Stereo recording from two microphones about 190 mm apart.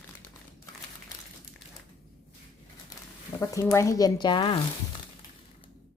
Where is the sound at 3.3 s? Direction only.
15° left (ahead or behind).